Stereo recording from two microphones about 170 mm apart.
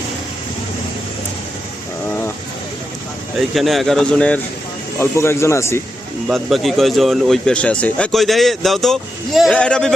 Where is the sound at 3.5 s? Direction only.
Centre (ahead or behind); by 5.8 s 15° left (ahead or behind).